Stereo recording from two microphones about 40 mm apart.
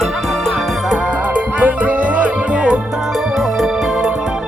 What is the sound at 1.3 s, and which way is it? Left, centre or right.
Music, right.